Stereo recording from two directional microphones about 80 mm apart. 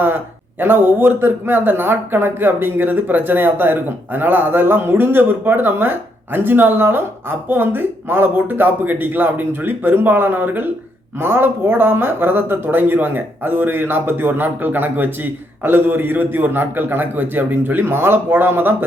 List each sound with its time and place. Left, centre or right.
0.6 s speech: right